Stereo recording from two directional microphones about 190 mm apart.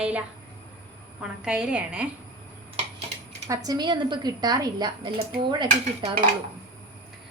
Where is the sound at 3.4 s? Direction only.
15° right (ahead or behind).